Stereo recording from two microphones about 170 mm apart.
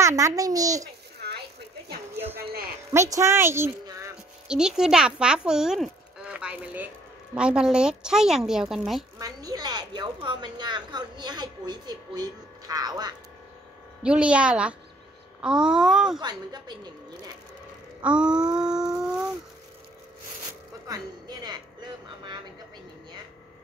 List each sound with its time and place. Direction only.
0.0 s a woman's voice: 20° right (ahead or behind)
2.9 s a woman's voice: 15° right (ahead or behind)
4.5 s speech: 5° right (ahead or behind)
9.2 s a woman's voice: 20° right (ahead or behind)
14.0 s a woman's voice: 5° right (ahead or behind)
16.2 s a woman's voice: 25° right (ahead or behind)
18.0 s a sound: 5° right (ahead or behind)
20.9 s a sound: 25° right (ahead or behind)